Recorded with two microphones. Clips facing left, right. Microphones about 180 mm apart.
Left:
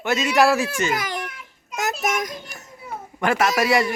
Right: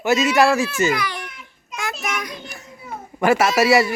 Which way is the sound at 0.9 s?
45° left (ahead or behind).